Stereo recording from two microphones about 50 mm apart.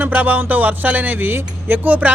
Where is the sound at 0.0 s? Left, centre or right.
Right.